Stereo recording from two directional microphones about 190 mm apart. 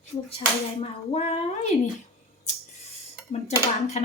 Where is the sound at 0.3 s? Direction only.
30° left (ahead or behind).